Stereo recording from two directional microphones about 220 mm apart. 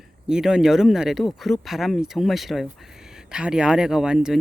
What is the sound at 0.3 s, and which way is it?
Speech, 5° right (ahead or behind).